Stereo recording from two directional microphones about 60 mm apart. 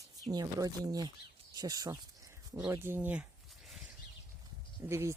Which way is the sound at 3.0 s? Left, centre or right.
Right.